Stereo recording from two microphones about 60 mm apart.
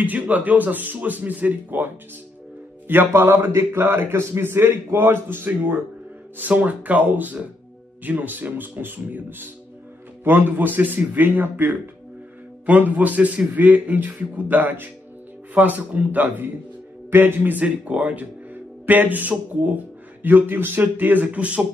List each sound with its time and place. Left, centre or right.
0.0 s speech: right
3.1 s a man's voice: right